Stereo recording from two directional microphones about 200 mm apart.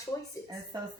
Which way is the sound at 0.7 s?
20° right (ahead or behind).